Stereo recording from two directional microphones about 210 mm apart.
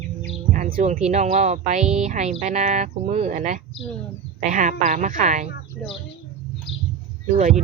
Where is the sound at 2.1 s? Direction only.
35° right (ahead or behind).